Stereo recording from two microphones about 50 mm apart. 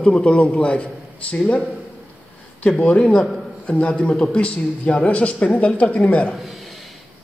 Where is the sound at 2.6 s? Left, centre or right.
Left.